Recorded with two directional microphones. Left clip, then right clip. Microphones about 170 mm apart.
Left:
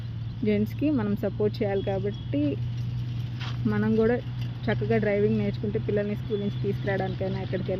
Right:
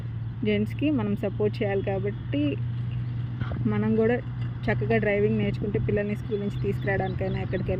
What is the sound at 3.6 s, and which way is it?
Speech, centre (ahead or behind).